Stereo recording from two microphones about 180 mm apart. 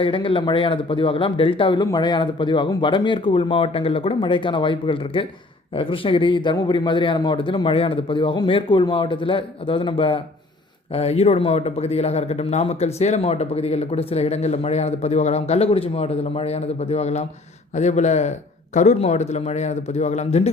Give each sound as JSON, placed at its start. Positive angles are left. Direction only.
{"t": 0.0, "sound": "speech", "side_deg": 30}